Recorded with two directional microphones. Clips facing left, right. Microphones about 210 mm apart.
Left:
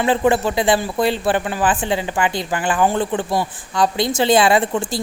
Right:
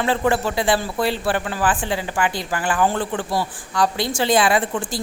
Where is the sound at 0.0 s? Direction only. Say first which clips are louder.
Left 3 dB; 20° left (ahead or behind).